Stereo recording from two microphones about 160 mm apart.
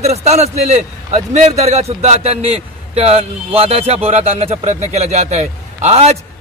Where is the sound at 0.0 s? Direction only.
45° right (ahead or behind).